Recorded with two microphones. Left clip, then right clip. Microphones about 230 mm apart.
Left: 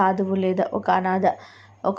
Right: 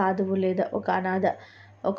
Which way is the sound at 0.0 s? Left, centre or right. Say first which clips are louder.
Left 4 dB; centre.